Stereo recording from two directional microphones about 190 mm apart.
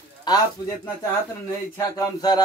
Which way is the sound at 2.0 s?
20° left (ahead or behind).